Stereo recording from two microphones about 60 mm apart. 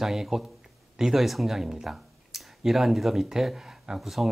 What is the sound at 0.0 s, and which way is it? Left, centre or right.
Speech, centre.